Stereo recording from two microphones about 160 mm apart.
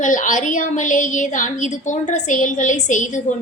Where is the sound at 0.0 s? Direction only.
50° left (ahead or behind).